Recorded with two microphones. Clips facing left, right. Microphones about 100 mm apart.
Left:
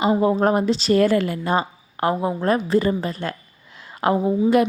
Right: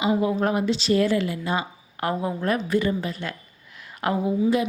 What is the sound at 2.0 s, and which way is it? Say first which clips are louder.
A woman's voice: left 4 dB; 30° left (ahead or behind).